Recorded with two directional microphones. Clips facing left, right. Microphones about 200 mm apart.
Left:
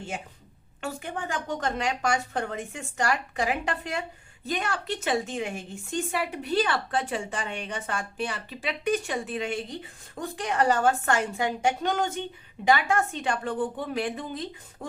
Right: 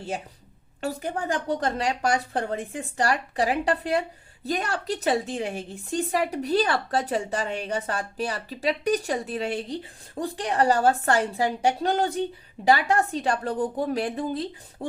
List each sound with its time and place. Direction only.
0.8 s a woman's voice: 35° right (ahead or behind)